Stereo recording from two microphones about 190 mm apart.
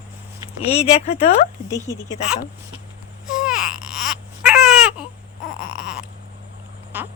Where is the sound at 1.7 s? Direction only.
15° left (ahead or behind).